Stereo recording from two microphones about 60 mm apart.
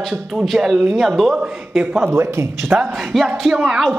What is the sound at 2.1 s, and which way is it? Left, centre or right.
Speech, right.